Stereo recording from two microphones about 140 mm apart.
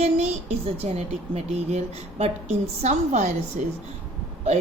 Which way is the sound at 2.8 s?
55° right (ahead or behind).